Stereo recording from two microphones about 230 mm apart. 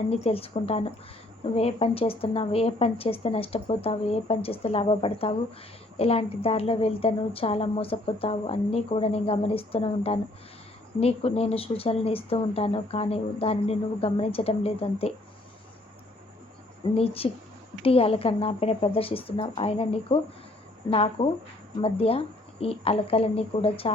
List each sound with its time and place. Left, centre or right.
0.1 s a woman's voice: left
16.9 s a woman's voice: left